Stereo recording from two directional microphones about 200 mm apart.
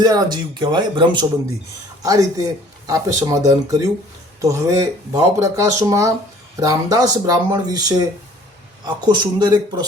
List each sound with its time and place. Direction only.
0.0 s speech: 20° right (ahead or behind)